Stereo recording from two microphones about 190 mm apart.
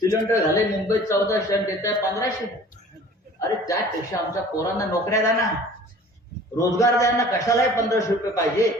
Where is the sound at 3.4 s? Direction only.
15° left (ahead or behind).